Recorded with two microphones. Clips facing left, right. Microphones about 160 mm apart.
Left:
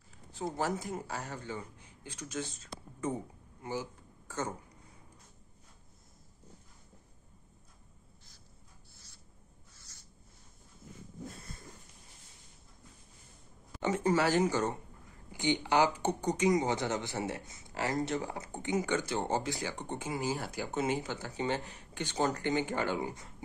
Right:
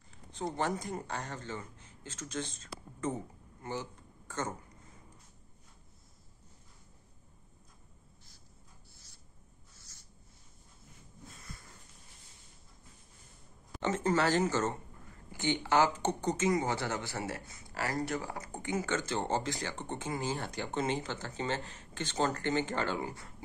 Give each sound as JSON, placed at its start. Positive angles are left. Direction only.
{"t": 0.1, "sound": "a man's voice", "side_deg": 5}
{"t": 3.0, "sound": "a sound", "side_deg": 10}
{"t": 13.7, "sound": "speech", "side_deg": 10}